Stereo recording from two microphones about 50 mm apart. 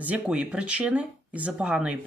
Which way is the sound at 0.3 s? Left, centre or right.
Centre.